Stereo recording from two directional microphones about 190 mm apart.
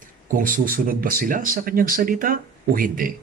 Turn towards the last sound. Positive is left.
turn(degrees=-45)  # may be behind; listen again after turning